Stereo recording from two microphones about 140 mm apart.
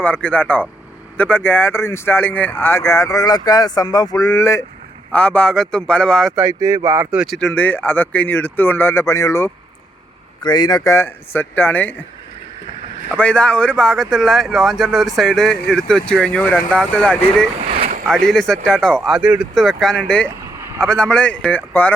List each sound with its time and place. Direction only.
0.0 s speech: 10° left (ahead or behind)
5.1 s speech: 10° left (ahead or behind)
6.3 s speech: 20° right (ahead or behind)
7.3 s speech: 5° left (ahead or behind)
13.1 s speech: 10° left (ahead or behind)